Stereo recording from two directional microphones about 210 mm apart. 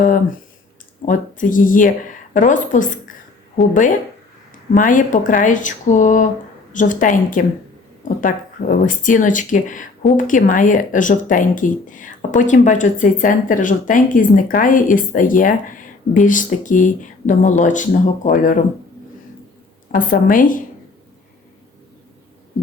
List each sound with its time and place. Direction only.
1.0 s speech: 40° left (ahead or behind)
4.7 s speech: 40° left (ahead or behind)
19.9 s speech: 40° left (ahead or behind)